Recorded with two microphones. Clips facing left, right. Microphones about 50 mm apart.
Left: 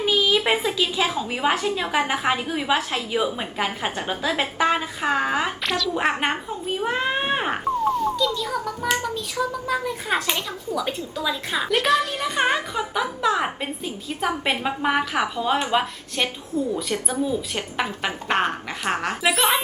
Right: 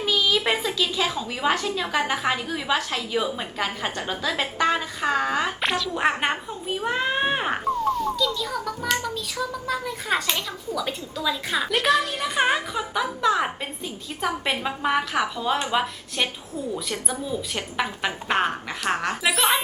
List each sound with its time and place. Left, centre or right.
0.0 s a sound: centre
0.4 s a woman's voice: centre
5.6 s a woman's voice: centre
6.0 s a woman's voice: centre
17.2 s a woman's voice: centre